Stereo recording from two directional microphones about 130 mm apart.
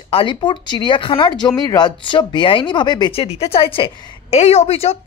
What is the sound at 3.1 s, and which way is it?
Speech, 50° left (ahead or behind).